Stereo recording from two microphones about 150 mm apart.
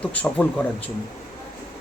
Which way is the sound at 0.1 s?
10° left (ahead or behind).